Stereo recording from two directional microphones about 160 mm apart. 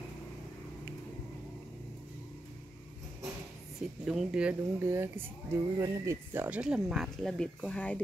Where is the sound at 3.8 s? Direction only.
5° right (ahead or behind).